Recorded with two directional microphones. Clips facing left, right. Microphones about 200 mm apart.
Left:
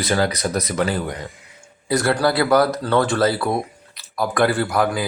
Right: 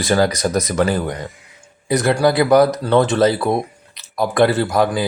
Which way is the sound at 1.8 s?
20° right (ahead or behind).